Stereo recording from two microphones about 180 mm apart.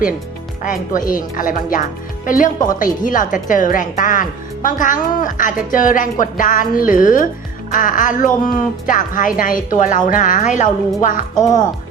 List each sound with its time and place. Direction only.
0.6 s a woman's voice: 50° left (ahead or behind)
11.3 s speech: 20° left (ahead or behind)